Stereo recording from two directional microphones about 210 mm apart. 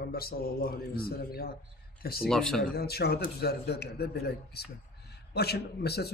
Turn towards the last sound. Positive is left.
turn(degrees=50)  # may be behind; listen again after turning